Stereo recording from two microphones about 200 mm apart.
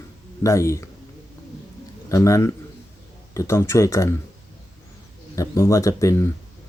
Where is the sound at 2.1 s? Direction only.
15° left (ahead or behind).